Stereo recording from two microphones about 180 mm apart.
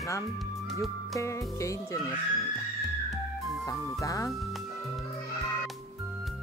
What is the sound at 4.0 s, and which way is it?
Speech, 15° left (ahead or behind).